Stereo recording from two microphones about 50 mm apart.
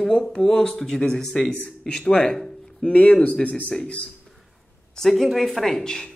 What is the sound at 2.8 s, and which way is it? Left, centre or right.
Speech, left.